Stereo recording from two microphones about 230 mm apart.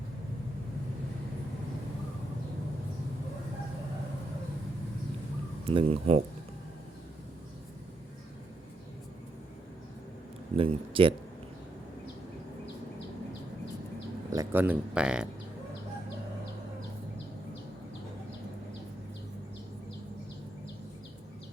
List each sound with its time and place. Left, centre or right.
5.6 s speech: right
10.6 s speech: right
14.3 s speech: centre